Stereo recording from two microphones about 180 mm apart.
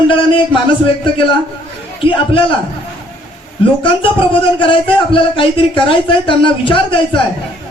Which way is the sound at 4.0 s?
30° left (ahead or behind).